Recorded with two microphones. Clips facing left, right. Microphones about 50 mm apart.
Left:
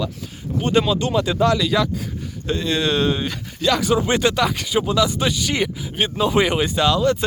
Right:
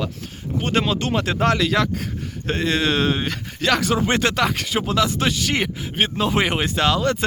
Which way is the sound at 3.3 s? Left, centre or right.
Right.